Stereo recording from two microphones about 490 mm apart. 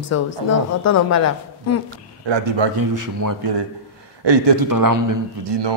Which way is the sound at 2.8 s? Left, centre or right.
Right.